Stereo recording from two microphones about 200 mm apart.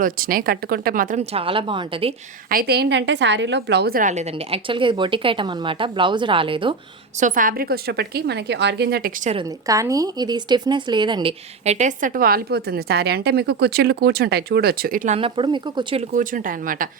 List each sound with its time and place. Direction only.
0.0 s speech: 45° right (ahead or behind); by 2.1 s 25° right (ahead or behind)
2.5 s a woman's voice: 50° right (ahead or behind); by 6.7 s 25° right (ahead or behind)
7.2 s a woman's voice: 40° right (ahead or behind)
9.3 s speech: 20° right (ahead or behind)
16.1 s a woman's voice: 40° right (ahead or behind)